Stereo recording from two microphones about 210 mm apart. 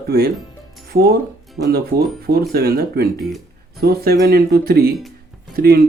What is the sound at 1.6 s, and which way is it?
A man's voice, 50° right (ahead or behind).